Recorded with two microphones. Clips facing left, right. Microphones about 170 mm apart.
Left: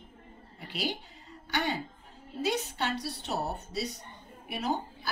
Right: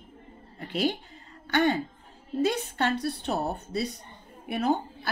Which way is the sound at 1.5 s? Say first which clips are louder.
Right 8 dB; 50° right (ahead or behind).